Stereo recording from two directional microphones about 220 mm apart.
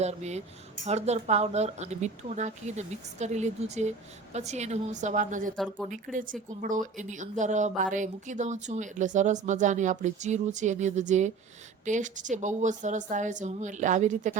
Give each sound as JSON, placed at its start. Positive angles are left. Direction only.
{"t": 0.0, "sound": "speech", "side_deg": -30}
{"t": 5.5, "sound": "speech", "side_deg": 5}
{"t": 5.9, "sound": "speech", "side_deg": -35}